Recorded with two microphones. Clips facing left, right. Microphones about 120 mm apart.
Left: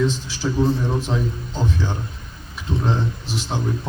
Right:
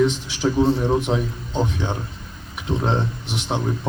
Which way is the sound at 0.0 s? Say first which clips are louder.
Right 3 dB; 20° right (ahead or behind).